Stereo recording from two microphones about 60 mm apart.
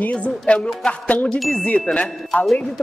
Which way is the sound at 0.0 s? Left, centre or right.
Left.